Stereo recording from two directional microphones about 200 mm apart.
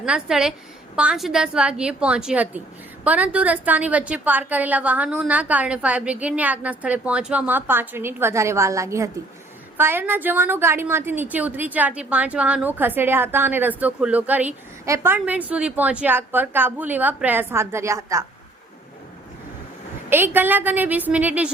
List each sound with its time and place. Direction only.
0.0 s a woman's voice: 5° right (ahead or behind)
20.1 s a woman's voice: 10° right (ahead or behind)